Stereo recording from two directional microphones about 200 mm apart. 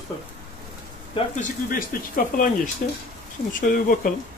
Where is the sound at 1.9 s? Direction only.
50° left (ahead or behind).